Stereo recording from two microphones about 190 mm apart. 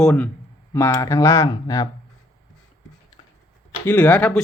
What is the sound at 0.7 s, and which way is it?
Speech, 15° left (ahead or behind).